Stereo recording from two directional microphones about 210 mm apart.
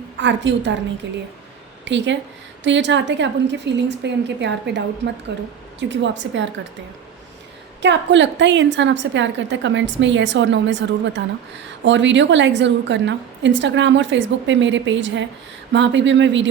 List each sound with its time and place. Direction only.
0.2 s a woman's voice: 60° right (ahead or behind)
7.8 s a woman's voice: 60° right (ahead or behind)